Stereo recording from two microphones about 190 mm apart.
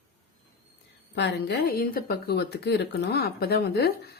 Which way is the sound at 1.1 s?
60° left (ahead or behind).